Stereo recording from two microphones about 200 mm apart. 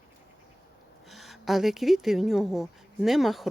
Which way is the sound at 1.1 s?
Centre (ahead or behind).